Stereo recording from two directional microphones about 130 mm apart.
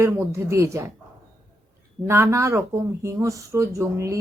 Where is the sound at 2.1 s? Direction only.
20° right (ahead or behind).